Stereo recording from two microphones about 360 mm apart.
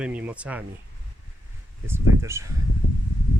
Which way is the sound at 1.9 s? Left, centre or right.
Centre.